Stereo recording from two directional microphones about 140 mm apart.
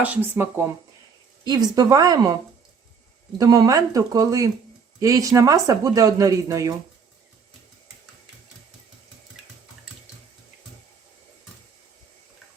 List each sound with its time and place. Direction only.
0.0 s speech: 10° right (ahead or behind)
1.5 s speech: 30° right (ahead or behind)
3.3 s speech: 25° right (ahead or behind)